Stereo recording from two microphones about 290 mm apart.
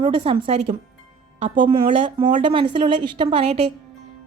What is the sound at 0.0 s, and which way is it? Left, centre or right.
A woman's voice, centre.